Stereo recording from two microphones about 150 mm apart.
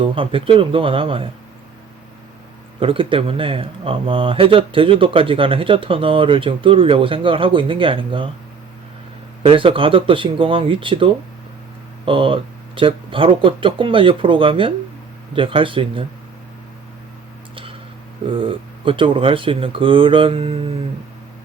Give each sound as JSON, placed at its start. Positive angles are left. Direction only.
{"t": 0.0, "sound": "speech", "side_deg": -35}
{"t": 2.8, "sound": "speech", "side_deg": -35}
{"t": 9.4, "sound": "speech", "side_deg": -35}
{"t": 17.5, "sound": "a sound", "side_deg": -35}
{"t": 18.3, "sound": "speech", "side_deg": -35}